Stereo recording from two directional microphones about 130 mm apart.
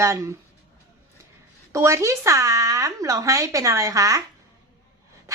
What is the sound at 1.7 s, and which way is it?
Speech, 25° right (ahead or behind).